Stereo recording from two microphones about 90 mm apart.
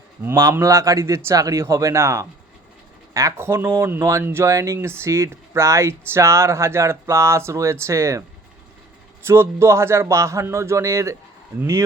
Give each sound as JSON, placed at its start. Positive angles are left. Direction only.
{"t": 0.2, "sound": "speech", "side_deg": -30}
{"t": 9.2, "sound": "speech", "side_deg": -30}